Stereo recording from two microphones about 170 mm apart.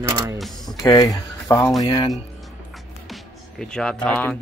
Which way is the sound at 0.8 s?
20° left (ahead or behind).